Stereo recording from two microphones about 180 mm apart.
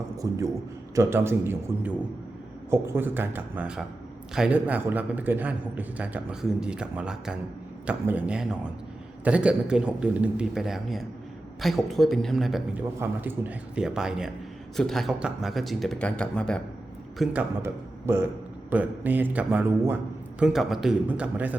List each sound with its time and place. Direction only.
0.2 s a man's voice: 20° right (ahead or behind); by 16.6 s 5° left (ahead or behind)
17.2 s a man's voice: 10° right (ahead or behind)